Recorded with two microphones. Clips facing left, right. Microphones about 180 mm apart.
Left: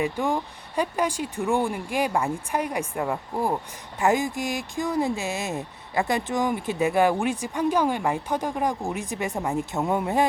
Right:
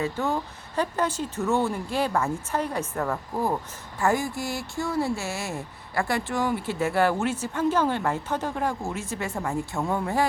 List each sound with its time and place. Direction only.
0.0 s speech: 15° left (ahead or behind)